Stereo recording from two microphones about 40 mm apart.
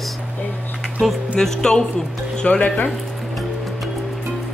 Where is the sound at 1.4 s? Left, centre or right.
Centre.